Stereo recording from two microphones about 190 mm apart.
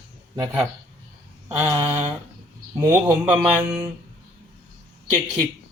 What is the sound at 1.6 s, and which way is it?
Speech, 15° right (ahead or behind).